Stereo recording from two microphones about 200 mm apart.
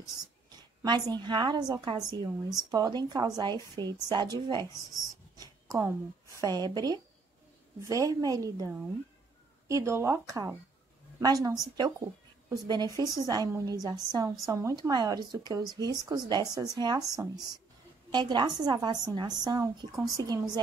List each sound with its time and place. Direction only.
0.5 s a woman's voice: 20° right (ahead or behind)